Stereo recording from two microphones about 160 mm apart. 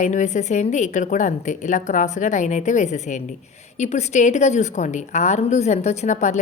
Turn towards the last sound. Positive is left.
turn(degrees=50)  # may be behind; listen again after turning